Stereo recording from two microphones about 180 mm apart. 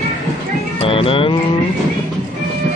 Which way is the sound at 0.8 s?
30° left (ahead or behind).